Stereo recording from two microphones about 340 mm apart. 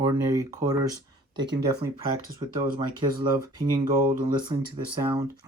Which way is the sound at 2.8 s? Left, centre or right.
Centre.